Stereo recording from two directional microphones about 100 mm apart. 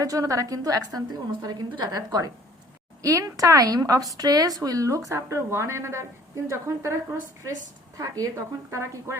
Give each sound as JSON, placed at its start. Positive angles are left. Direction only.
{"t": 0.0, "sound": "a woman's voice", "side_deg": -35}